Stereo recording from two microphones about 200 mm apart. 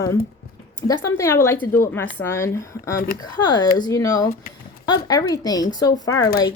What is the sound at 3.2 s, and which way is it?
Speech, 20° left (ahead or behind).